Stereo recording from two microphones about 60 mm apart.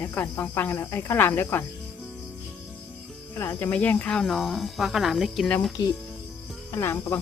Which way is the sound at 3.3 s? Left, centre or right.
Left.